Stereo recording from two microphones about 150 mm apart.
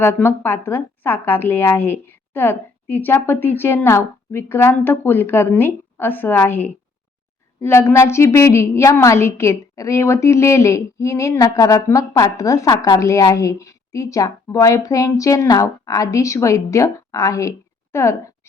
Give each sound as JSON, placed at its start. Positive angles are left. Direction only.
{"t": 0.0, "sound": "a woman's voice", "side_deg": 15}